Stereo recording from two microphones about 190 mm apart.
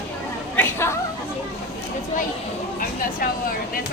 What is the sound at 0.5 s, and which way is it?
Chatter, 10° left (ahead or behind).